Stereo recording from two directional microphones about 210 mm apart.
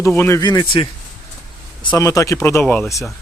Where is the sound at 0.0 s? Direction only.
10° left (ahead or behind).